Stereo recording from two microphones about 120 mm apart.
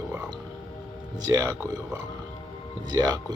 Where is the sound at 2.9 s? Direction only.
30° right (ahead or behind).